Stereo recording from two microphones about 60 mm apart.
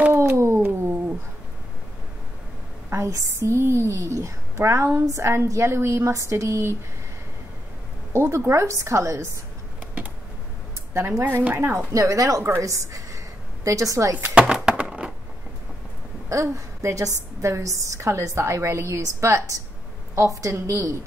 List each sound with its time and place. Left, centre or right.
0.7 s cat: right
2.9 s a woman's voice: right
8.1 s a woman's voice: right
10.9 s speech: right
11.5 s a woman's voice: right
11.9 s a woman's voice: right
14.1 s a sound: right
16.3 s a woman's voice: right
17.4 s a woman's voice: right